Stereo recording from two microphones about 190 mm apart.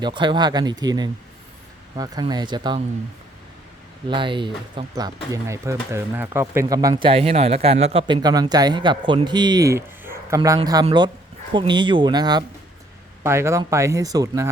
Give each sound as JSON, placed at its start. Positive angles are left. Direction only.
{"t": 0.0, "sound": "speech", "side_deg": -25}
{"t": 4.1, "sound": "speech", "side_deg": -25}
{"t": 6.9, "sound": "speech", "side_deg": -30}